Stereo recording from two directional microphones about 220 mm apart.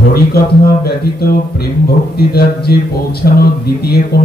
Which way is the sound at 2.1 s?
45° left (ahead or behind).